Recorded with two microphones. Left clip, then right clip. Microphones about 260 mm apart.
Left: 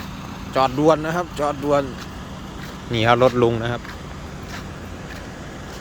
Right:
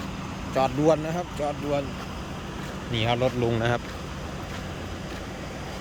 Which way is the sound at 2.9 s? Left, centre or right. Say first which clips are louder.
Left 9 dB; centre.